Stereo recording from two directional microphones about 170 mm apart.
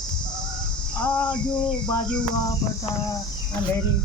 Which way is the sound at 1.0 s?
10° left (ahead or behind).